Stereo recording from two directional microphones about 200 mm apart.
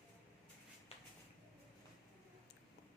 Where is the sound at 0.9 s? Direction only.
30° left (ahead or behind).